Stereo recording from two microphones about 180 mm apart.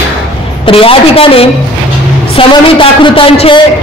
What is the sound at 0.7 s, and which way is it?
A man's voice, 30° left (ahead or behind).